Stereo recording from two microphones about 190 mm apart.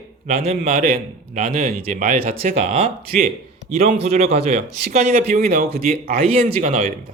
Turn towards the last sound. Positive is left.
turn(degrees=-35)  # may be behind; listen again after turning